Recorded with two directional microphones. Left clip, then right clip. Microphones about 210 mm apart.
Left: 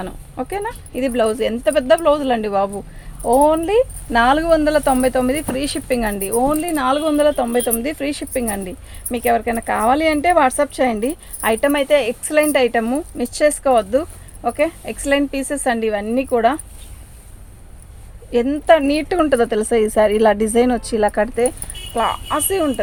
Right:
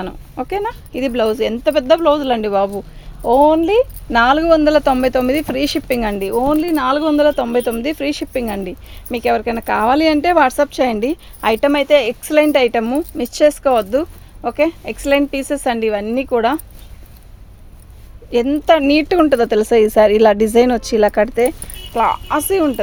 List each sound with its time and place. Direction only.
0.0 s speech: 45° right (ahead or behind)
18.3 s speech: 45° right (ahead or behind)